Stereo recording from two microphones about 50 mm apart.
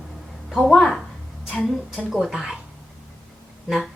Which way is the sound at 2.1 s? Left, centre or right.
Centre.